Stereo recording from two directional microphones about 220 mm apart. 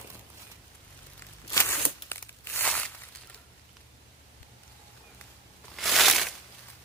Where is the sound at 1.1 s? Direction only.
10° left (ahead or behind).